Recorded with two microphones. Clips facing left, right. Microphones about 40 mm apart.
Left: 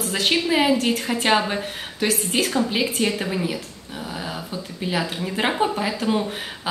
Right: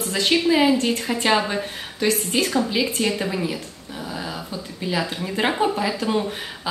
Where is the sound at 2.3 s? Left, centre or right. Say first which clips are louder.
Left 1 dB; left.